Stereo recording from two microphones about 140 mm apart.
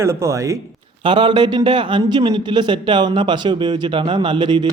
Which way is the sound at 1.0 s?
35° right (ahead or behind).